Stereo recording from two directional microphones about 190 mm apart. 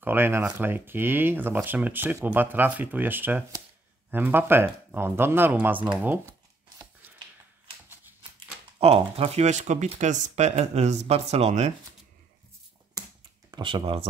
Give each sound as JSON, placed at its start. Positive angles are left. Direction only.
{"t": 0.0, "sound": "speech", "side_deg": -10}
{"t": 6.8, "sound": "chopping", "side_deg": -10}
{"t": 7.9, "sound": "typewriter", "side_deg": -10}
{"t": 8.7, "sound": "speech", "side_deg": -30}
{"t": 13.5, "sound": "speech", "side_deg": -25}